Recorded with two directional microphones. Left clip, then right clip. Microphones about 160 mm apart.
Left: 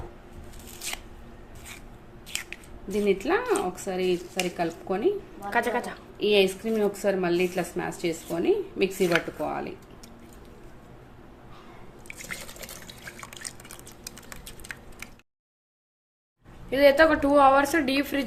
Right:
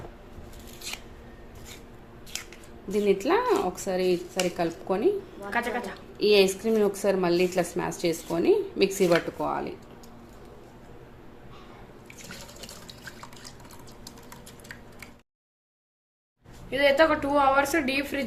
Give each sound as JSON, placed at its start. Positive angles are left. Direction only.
{"t": 2.9, "sound": "a woman's voice", "side_deg": -15}
{"t": 5.5, "sound": "a woman's voice", "side_deg": 35}
{"t": 6.1, "sound": "a woman's voice", "side_deg": -20}
{"t": 9.4, "sound": "speech", "side_deg": -10}
{"t": 16.6, "sound": "a woman's voice", "side_deg": 35}